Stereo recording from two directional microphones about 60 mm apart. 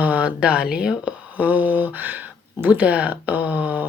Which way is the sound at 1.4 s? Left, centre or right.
Right.